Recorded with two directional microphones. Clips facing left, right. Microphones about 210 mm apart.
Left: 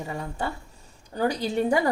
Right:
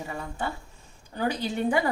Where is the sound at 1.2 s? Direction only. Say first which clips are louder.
Left 3 dB; 40° left (ahead or behind).